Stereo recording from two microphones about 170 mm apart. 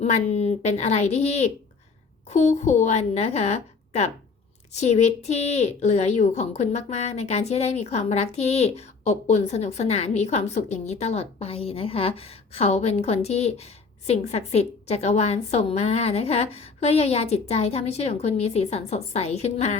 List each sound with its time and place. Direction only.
0.0 s speech: 40° left (ahead or behind)